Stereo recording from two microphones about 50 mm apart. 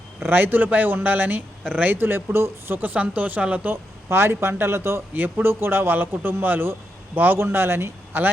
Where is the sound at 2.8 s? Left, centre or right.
Right.